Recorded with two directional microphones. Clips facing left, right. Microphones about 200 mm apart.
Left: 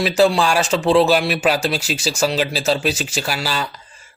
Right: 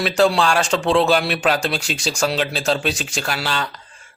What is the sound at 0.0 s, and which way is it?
Speech, 5° left (ahead or behind).